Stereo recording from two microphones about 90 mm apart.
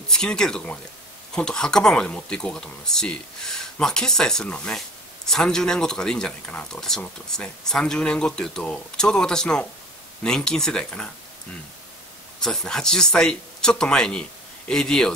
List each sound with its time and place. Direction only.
0.1 s speech: 10° left (ahead or behind)
12.4 s speech: 5° left (ahead or behind)